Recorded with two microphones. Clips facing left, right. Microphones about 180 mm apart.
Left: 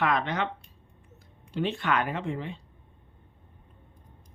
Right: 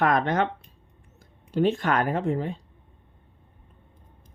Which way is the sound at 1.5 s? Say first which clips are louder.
Right 5 dB; 45° right (ahead or behind).